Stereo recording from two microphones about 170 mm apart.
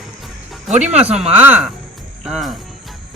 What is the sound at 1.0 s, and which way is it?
Speech, 35° right (ahead or behind).